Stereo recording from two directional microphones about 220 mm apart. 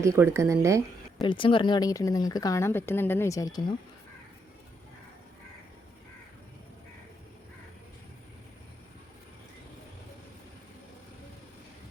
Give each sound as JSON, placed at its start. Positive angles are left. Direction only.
{"t": 0.0, "sound": "speech", "side_deg": -15}
{"t": 1.2, "sound": "speech", "side_deg": 25}